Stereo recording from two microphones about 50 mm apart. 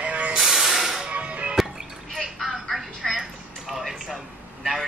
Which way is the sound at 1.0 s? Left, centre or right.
Right.